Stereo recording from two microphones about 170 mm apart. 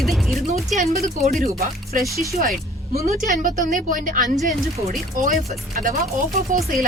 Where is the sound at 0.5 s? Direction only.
45° right (ahead or behind).